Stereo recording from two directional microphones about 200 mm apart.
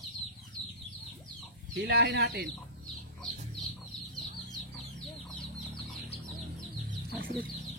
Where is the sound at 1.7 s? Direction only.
55° right (ahead or behind).